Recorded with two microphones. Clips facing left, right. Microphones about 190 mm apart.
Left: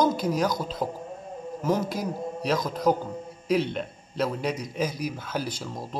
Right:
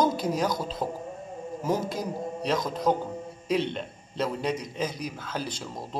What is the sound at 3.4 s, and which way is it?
A man's voice, 5° left (ahead or behind).